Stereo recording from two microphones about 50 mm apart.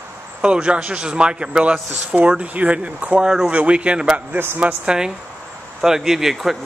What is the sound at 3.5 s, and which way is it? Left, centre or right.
A man's voice, right.